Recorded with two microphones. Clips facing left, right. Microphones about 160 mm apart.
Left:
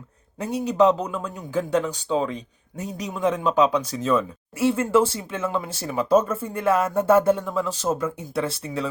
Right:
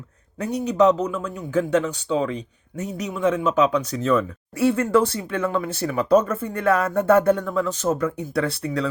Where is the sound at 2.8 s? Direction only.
35° left (ahead or behind).